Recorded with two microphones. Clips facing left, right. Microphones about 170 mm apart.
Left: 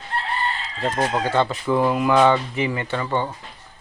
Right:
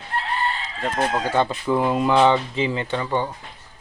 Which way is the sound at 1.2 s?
15° right (ahead or behind).